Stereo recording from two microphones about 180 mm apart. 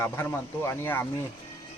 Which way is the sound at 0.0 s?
15° left (ahead or behind).